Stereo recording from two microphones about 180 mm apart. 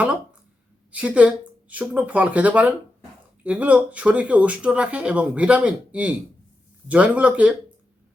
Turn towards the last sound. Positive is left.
turn(degrees=-5)  # may be behind; listen again after turning